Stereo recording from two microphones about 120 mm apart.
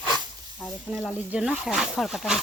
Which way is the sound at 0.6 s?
Centre (ahead or behind).